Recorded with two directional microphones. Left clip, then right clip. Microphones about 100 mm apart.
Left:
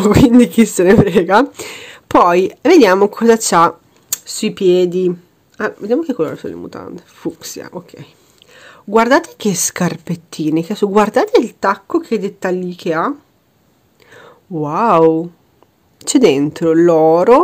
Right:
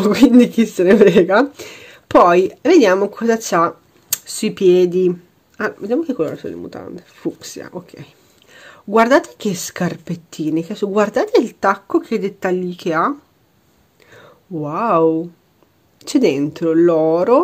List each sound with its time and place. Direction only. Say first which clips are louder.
0.1 s a woman's voice: left 1 dB; 40° left (ahead or behind)
4.1 s a woman's voice: left 2 dB; 25° left (ahead or behind)